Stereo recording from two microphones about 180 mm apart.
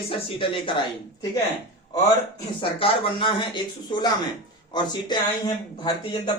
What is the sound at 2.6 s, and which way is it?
Speech, 30° left (ahead or behind).